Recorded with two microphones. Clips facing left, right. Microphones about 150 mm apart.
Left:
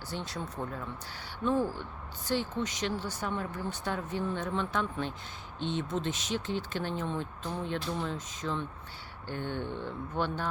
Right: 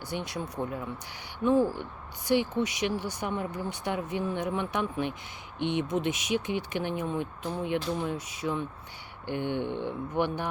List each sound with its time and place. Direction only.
0.1 s speech: 15° right (ahead or behind)
2.2 s speech: 15° right (ahead or behind)